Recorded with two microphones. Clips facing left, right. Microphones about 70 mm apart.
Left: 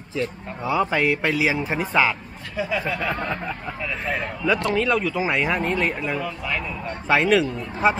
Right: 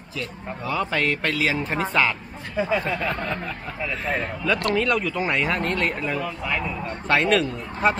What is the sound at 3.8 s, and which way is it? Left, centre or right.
Speech, centre.